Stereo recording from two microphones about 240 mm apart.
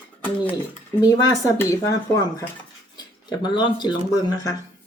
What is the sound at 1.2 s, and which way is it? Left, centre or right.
Speech, centre.